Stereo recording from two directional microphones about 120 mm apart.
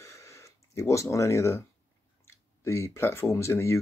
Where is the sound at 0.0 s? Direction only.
25° left (ahead or behind).